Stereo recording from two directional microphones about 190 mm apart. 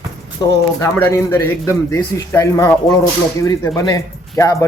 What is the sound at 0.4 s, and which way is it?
Speech, 20° left (ahead or behind).